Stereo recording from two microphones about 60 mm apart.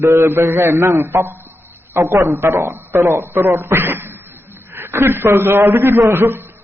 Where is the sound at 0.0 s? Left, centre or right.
Right.